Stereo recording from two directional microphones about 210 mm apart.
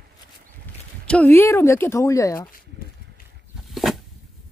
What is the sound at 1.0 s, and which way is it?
Speech, 5° left (ahead or behind).